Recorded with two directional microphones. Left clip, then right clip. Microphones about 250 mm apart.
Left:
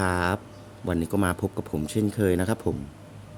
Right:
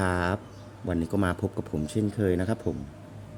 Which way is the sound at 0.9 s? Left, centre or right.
Centre.